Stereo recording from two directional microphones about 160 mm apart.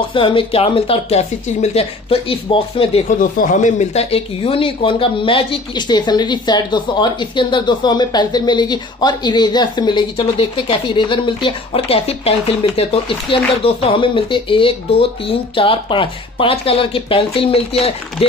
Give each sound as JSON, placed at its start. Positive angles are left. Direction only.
{"t": 0.1, "sound": "speech", "side_deg": 30}
{"t": 3.1, "sound": "speech", "side_deg": 55}